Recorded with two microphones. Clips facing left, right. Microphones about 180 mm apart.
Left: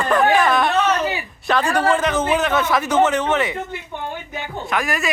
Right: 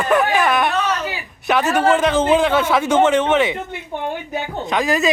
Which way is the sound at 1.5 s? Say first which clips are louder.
Right 2 dB; 20° right (ahead or behind).